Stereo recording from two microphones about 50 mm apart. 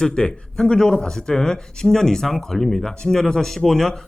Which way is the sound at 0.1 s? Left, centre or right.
Left.